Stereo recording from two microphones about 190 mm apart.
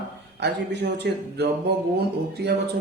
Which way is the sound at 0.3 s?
65° right (ahead or behind).